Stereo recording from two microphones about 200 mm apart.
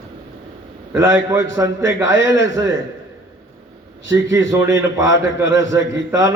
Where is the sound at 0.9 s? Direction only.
15° right (ahead or behind).